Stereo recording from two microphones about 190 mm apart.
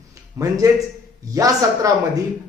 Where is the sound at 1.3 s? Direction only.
15° right (ahead or behind).